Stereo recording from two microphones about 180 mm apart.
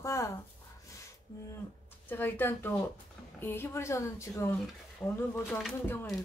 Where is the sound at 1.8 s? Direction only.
10° left (ahead or behind).